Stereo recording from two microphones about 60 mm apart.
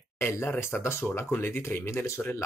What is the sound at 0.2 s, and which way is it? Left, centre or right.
Speech, left.